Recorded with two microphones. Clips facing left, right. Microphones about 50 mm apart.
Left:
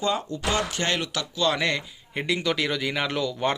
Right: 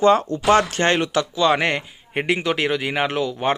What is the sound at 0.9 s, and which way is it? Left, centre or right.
Speech, right.